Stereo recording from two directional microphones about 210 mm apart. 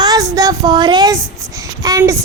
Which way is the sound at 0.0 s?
20° right (ahead or behind).